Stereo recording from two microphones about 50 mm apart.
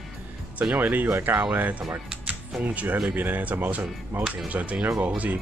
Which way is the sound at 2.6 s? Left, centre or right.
Right.